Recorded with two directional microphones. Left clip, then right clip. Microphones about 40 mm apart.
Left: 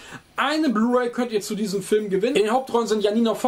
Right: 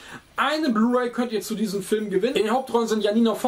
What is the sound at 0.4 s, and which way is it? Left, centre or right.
Speech, left.